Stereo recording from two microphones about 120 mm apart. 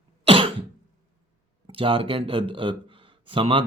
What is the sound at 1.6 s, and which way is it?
Speech, 45° right (ahead or behind).